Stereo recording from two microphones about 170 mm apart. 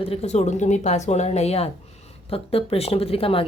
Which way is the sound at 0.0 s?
35° left (ahead or behind).